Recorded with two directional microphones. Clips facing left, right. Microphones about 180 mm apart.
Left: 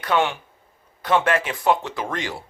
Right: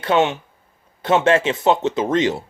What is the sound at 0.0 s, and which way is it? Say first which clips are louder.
Speech: right 4 dB; 25° right (ahead or behind).